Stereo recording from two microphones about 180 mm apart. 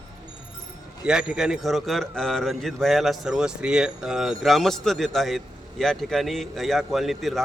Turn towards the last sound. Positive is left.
turn(degrees=0)  # may be behind; listen again after turning